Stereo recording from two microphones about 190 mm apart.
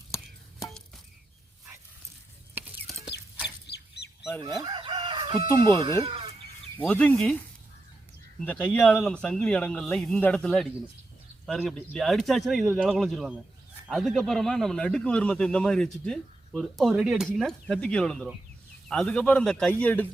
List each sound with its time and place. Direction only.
0.1 s a sound: 15° left (ahead or behind)
3.1 s chicken: 10° right (ahead or behind)
4.6 s chicken: 25° right (ahead or behind)
5.5 s speech: 25° right (ahead or behind)
6.0 s chicken: 30° right (ahead or behind)
6.7 s speech: 10° left (ahead or behind)
8.4 s speech: 10° left (ahead or behind)